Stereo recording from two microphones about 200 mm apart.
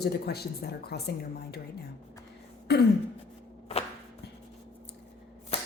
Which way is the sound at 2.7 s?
55° left (ahead or behind).